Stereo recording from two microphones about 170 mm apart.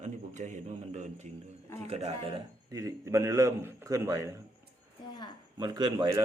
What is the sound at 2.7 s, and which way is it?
A man's voice, 20° right (ahead or behind).